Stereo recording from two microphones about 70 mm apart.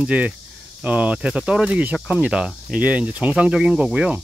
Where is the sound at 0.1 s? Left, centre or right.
Right.